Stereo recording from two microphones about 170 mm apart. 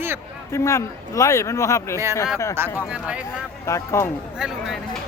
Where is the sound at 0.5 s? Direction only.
15° left (ahead or behind).